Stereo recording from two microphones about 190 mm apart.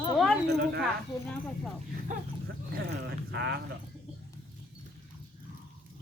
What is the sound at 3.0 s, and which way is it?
Speech, 60° right (ahead or behind).